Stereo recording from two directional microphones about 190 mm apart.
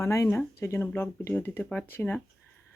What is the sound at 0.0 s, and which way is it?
Speech, 15° left (ahead or behind).